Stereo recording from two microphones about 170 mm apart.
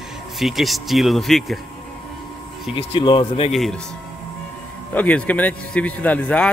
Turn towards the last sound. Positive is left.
turn(degrees=10)  # may be behind; listen again after turning